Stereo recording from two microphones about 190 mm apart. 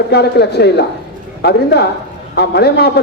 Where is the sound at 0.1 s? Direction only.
60° left (ahead or behind).